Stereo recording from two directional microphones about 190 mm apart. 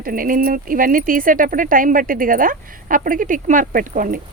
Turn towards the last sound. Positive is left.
turn(degrees=-45)  # may be behind; listen again after turning